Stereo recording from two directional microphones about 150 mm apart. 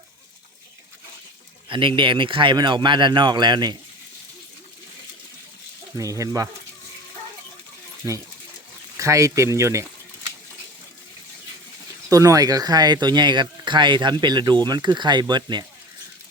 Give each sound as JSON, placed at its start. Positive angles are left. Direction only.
{"t": 1.7, "sound": "speech", "side_deg": -35}
{"t": 6.0, "sound": "speech", "side_deg": -20}
{"t": 9.0, "sound": "speech", "side_deg": -20}
{"t": 12.1, "sound": "speech", "side_deg": -20}